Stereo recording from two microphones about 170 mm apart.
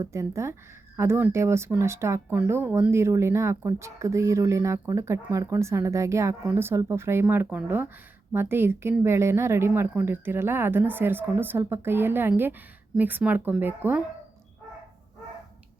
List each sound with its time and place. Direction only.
0.0 s speech: 15° right (ahead or behind)